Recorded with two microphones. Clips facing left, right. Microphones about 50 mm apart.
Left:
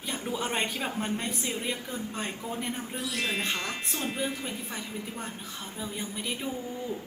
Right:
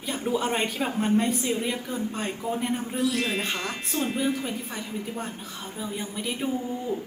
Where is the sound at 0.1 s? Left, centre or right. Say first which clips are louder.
Right 5 dB; right.